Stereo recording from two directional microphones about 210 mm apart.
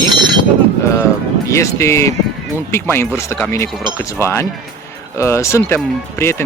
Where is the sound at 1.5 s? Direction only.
15° left (ahead or behind).